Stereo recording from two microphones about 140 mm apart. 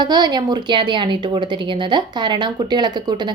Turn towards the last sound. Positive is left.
turn(degrees=-30)  # may be behind; listen again after turning